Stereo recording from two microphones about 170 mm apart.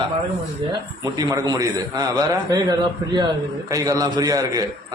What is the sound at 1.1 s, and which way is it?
A man's voice, 20° right (ahead or behind).